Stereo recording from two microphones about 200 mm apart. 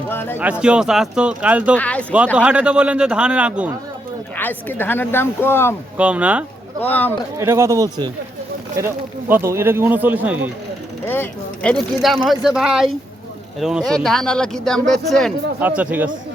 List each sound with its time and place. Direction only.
0.1 s a sound: 10° left (ahead or behind)
0.6 s speech: 5° right (ahead or behind)
1.7 s speech: 5° left (ahead or behind)
2.1 s speech: 5° right (ahead or behind)
4.4 s speech: 10° left (ahead or behind)
6.0 s speech: 5° right (ahead or behind)
6.9 s speech: 10° left (ahead or behind)
7.3 s speech: 15° right (ahead or behind)
9.3 s speech: 15° right (ahead or behind)
11.0 s speech: 10° left (ahead or behind); by 16.0 s 5° right (ahead or behind)